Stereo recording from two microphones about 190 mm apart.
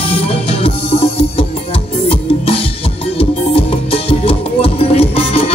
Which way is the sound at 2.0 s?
30° left (ahead or behind).